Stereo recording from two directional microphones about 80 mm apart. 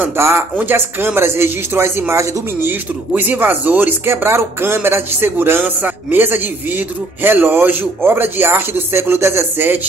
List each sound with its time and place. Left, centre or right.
0.0 s speech: right
2.7 s speech: right